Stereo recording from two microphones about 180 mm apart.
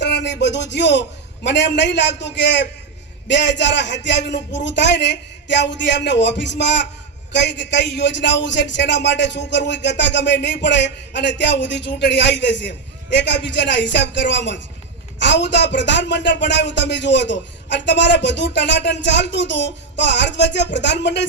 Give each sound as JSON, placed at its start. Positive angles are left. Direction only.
{"t": 0.0, "sound": "a man's voice", "side_deg": 75}